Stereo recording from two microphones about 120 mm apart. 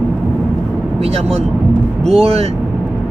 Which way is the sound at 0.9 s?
60° right (ahead or behind).